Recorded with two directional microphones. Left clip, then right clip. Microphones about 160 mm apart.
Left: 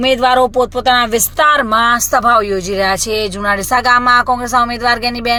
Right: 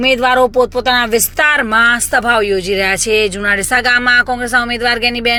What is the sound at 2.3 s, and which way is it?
Speech, 30° right (ahead or behind).